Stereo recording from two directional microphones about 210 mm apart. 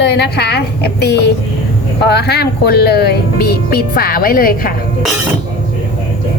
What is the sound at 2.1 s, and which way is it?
Speech, 50° left (ahead or behind).